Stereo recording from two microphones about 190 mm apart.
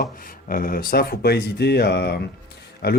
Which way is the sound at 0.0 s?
45° left (ahead or behind).